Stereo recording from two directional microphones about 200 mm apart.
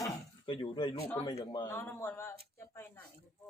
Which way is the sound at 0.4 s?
25° left (ahead or behind).